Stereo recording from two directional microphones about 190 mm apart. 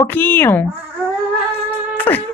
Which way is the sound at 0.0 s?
10° left (ahead or behind).